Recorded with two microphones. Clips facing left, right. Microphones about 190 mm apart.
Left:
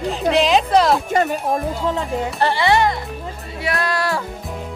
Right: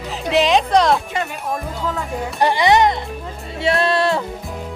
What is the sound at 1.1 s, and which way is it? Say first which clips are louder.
Speech: left 6 dB; 40° left (ahead or behind).